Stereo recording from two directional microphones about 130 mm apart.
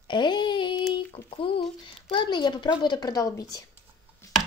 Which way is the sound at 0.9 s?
45° left (ahead or behind).